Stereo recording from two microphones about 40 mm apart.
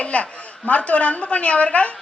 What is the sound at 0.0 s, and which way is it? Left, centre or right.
A woman's voice, left.